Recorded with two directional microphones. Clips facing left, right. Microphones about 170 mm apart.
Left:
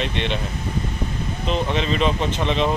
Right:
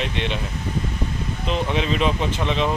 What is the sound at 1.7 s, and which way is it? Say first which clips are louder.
Speech: right 1 dB; 5° right (ahead or behind).